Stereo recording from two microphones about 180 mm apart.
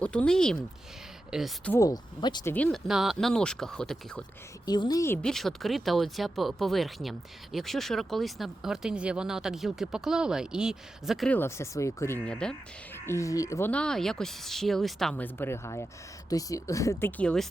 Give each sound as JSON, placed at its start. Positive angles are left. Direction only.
{"t": 0.0, "sound": "speech", "side_deg": 5}
{"t": 1.7, "sound": "speech", "side_deg": 20}
{"t": 2.5, "sound": "speech", "side_deg": 10}
{"t": 4.6, "sound": "speech", "side_deg": 20}
{"t": 5.2, "sound": "speech", "side_deg": 0}
{"t": 11.3, "sound": "speech", "side_deg": 15}